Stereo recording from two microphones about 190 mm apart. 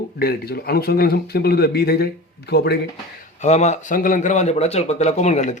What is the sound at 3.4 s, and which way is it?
Speech, 35° left (ahead or behind).